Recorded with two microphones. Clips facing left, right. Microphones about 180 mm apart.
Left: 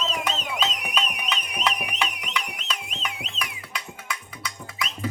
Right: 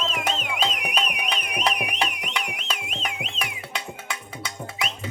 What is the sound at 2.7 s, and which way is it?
Music, 35° left (ahead or behind).